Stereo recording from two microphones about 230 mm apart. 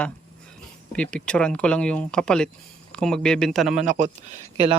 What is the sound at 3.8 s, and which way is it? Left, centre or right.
Speech, right.